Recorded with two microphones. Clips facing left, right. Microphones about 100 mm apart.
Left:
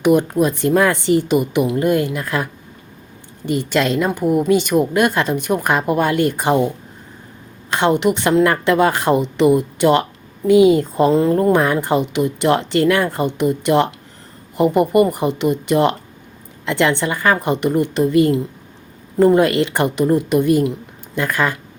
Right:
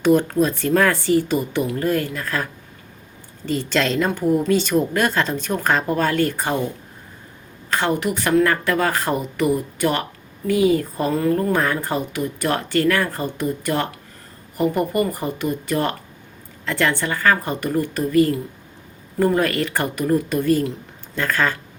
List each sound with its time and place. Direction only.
0.0 s a woman's voice: 15° left (ahead or behind)
7.7 s a woman's voice: 20° left (ahead or behind)